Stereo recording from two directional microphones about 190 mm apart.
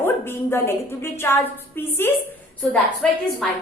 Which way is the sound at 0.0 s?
10° left (ahead or behind).